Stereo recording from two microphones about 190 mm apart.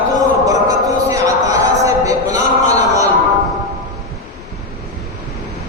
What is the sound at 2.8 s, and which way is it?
Music, 15° right (ahead or behind).